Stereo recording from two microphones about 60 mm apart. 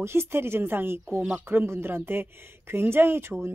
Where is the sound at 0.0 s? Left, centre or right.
Right.